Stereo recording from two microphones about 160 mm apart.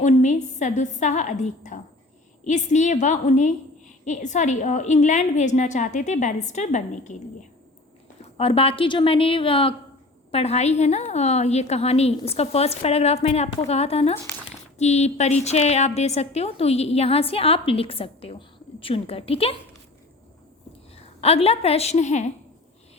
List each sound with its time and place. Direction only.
0.0 s a woman's voice: 50° left (ahead or behind)
8.2 s a woman's voice: 35° left (ahead or behind)
20.9 s a woman's voice: 40° left (ahead or behind)